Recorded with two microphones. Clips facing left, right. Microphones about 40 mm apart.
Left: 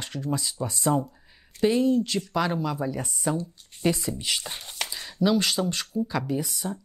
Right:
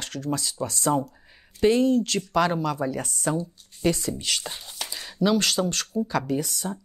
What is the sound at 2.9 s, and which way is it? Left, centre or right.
Speech, centre.